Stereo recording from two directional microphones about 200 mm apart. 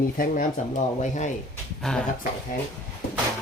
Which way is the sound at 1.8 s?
5° left (ahead or behind).